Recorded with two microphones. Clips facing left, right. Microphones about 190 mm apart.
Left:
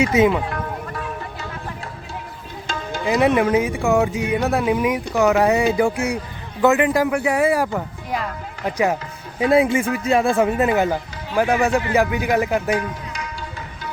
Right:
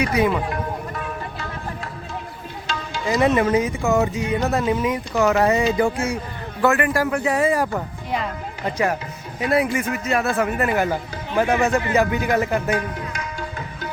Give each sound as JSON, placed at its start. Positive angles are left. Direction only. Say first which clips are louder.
{"t": 0.0, "sound": "speech", "louder": "left 4 dB", "side_deg": 20}
{"t": 2.6, "sound": "music", "louder": "left 2 dB", "side_deg": 55}
{"t": 3.2, "sound": "speech", "louder": "left 1 dB", "side_deg": 10}
{"t": 7.7, "sound": "music", "louder": "even", "side_deg": 0}
{"t": 9.4, "sound": "speech", "louder": "left 4 dB", "side_deg": 25}